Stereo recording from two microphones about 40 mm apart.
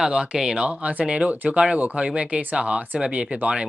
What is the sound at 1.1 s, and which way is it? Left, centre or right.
Speech, right.